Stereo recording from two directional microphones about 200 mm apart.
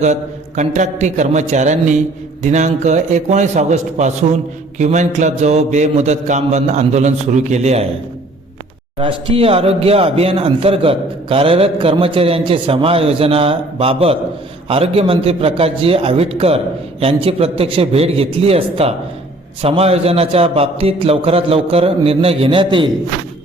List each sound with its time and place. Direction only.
0.0 s mantra: 35° right (ahead or behind)
9.0 s speech: 25° right (ahead or behind)